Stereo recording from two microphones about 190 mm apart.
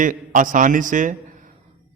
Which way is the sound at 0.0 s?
45° right (ahead or behind).